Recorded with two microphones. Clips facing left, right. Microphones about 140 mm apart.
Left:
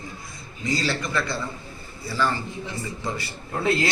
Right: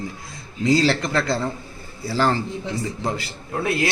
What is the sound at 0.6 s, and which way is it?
A man's voice, 90° right.